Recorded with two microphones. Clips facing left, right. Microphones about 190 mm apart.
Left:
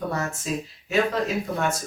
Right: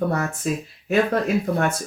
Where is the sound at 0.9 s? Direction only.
55° right (ahead or behind).